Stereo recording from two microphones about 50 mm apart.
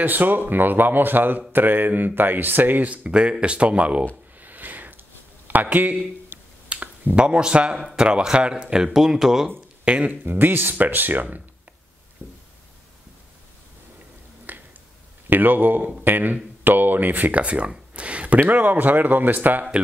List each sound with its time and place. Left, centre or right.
0.0 s speech: right
4.4 s a sound: right
5.5 s speech: right
6.3 s finger snapping: right
6.7 s finger snapping: right
7.2 s speech: centre
9.8 s speech: right
10.2 s speech: right
12.2 s a sound: right
14.5 s finger snapping: right
15.2 s speech: right